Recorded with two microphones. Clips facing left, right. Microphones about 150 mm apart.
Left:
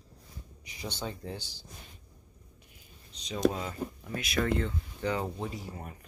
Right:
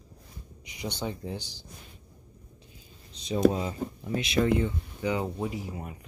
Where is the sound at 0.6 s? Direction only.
15° right (ahead or behind).